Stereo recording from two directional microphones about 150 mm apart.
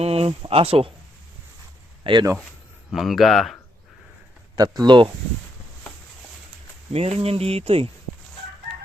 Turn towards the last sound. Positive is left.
turn(degrees=-40)  # may be behind; listen again after turning